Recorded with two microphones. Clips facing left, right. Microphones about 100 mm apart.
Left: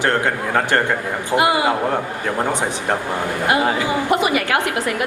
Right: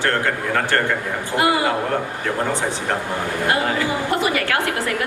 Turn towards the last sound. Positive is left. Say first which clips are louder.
# left 2 dB
turn(degrees=20)  # may be behind; listen again after turning